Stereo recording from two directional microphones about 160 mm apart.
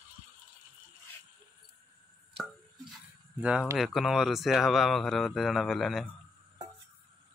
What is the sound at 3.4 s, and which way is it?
Speech, 5° right (ahead or behind).